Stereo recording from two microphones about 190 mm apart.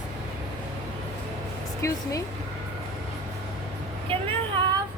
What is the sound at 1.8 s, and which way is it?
Music, 15° left (ahead or behind).